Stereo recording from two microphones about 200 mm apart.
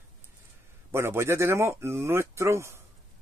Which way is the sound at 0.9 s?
15° right (ahead or behind).